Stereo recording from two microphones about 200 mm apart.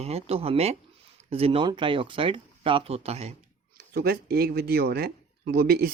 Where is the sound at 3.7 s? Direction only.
50° right (ahead or behind).